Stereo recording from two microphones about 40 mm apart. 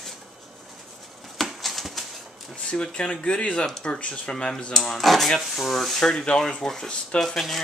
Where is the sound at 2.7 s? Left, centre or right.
Left; by 6.1 s centre.